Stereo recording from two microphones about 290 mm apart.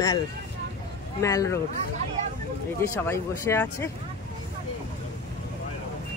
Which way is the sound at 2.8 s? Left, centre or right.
Centre.